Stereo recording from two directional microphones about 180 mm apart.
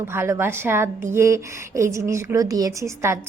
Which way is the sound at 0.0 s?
15° right (ahead or behind).